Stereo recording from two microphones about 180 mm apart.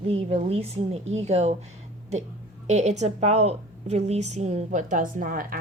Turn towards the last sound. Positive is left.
turn(degrees=-50)  # may be behind; listen again after turning